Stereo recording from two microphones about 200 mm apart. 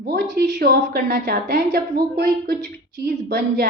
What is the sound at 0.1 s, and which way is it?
A woman's voice, 50° right (ahead or behind).